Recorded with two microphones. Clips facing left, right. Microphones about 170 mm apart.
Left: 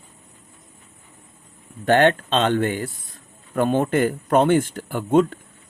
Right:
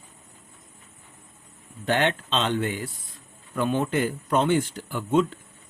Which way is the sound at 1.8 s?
55° left (ahead or behind).